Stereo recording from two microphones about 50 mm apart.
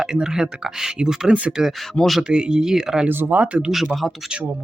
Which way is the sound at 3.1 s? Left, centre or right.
Right.